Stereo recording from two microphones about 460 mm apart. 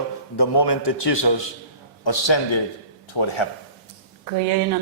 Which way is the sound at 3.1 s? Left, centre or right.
Left.